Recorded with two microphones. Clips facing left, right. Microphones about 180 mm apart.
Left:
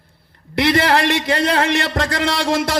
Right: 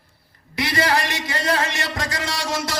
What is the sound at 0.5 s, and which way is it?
A man's voice, 60° left (ahead or behind).